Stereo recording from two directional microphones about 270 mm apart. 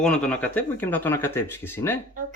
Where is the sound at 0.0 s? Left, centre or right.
Centre.